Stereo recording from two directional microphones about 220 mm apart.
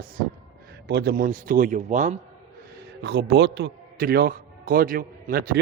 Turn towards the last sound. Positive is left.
turn(degrees=-45)  # may be behind; listen again after turning